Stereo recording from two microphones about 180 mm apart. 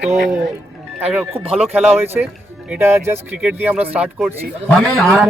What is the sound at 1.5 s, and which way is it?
Speech, 35° right (ahead or behind).